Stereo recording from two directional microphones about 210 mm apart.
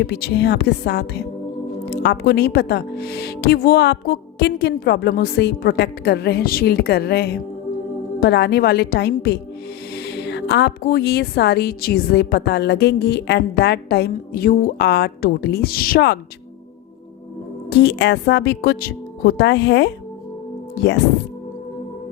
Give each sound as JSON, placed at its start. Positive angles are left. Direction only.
{"t": 0.0, "sound": "speech", "side_deg": 50}
{"t": 17.7, "sound": "speech", "side_deg": 50}